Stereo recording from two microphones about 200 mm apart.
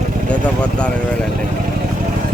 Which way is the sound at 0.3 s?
5° left (ahead or behind).